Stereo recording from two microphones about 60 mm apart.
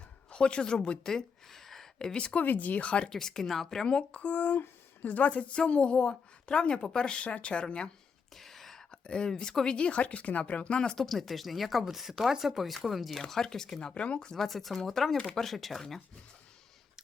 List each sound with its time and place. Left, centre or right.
0.3 s speech: centre
3.1 s speech: centre
3.8 s speech: centre
8.4 s whispering: centre
9.0 s speech: centre
14.4 s speech: centre